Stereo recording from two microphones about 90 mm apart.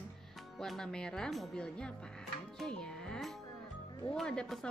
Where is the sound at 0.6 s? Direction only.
5° left (ahead or behind).